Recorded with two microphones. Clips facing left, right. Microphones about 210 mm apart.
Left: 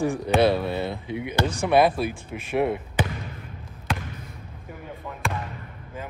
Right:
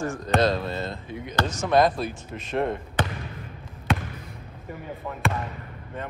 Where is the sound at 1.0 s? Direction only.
70° left (ahead or behind).